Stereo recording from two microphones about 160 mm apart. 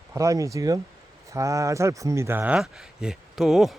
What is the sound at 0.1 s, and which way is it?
Speech, 20° right (ahead or behind).